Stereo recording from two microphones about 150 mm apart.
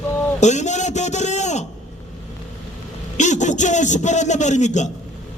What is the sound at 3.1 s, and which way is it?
A man's voice, 55° left (ahead or behind).